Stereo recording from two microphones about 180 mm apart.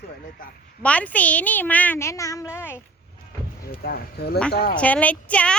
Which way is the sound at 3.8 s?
60° left (ahead or behind).